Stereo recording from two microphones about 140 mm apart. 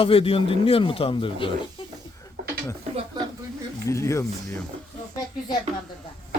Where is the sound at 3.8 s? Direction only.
20° left (ahead or behind).